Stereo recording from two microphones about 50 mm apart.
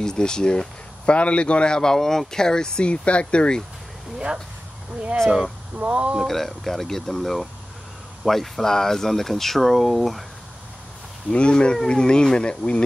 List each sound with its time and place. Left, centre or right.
0.0 s speech: centre
5.8 s speech: right
6.2 s speech: centre
11.2 s speech: centre